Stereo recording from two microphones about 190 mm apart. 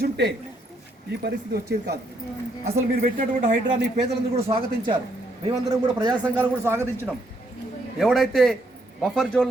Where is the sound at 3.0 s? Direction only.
45° right (ahead or behind).